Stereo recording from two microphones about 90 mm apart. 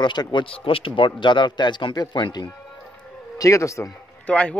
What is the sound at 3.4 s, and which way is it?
Speech, 35° left (ahead or behind).